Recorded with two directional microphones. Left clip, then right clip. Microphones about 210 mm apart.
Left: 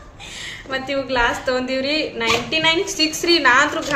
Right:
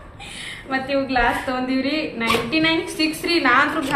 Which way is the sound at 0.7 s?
50° left (ahead or behind).